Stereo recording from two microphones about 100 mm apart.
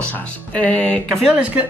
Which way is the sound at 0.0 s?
15° left (ahead or behind).